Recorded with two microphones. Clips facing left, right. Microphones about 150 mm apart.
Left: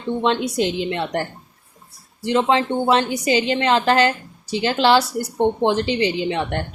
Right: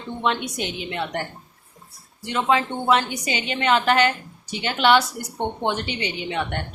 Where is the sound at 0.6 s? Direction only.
90° left.